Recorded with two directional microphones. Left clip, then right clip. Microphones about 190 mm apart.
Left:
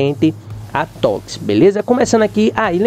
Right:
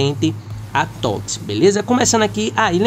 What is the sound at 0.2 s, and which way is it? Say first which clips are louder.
Speech: left 5 dB; 20° left (ahead or behind).